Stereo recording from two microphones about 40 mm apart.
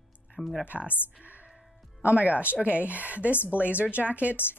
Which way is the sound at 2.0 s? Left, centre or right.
Right.